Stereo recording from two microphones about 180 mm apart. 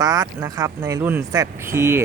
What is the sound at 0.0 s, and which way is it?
Speech, 20° right (ahead or behind).